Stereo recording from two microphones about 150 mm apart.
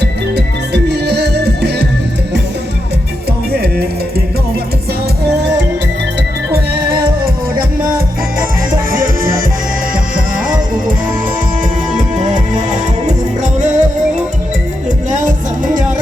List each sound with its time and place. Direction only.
0.0 s music: 90° right
3.5 s music: 90° right
9.9 s music: 65° right (ahead or behind)
12.2 s music: 50° right (ahead or behind)
14.8 s music: 55° right (ahead or behind)